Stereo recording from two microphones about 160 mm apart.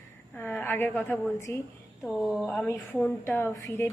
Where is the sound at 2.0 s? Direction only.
Centre (ahead or behind); by 3.9 s 15° left (ahead or behind).